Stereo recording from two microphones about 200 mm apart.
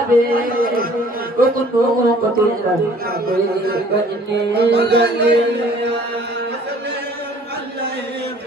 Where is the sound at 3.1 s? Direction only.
50° right (ahead or behind).